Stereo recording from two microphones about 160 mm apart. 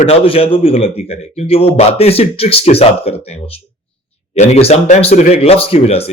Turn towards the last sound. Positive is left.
turn(degrees=35)  # may be behind; listen again after turning